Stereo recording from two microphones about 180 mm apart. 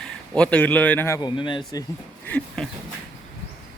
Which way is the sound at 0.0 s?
5° left (ahead or behind).